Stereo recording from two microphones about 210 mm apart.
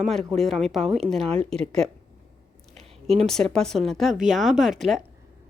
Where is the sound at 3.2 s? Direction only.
5° left (ahead or behind).